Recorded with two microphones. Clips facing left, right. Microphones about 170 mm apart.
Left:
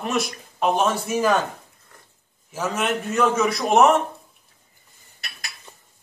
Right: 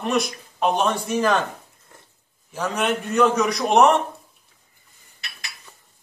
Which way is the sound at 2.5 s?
5° left (ahead or behind).